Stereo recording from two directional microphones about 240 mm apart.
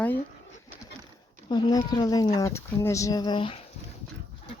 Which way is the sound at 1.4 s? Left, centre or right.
Centre.